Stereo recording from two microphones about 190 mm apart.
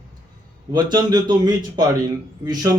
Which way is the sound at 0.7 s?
20° right (ahead or behind).